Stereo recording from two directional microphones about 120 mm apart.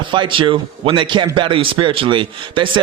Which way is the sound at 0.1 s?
45° right (ahead or behind).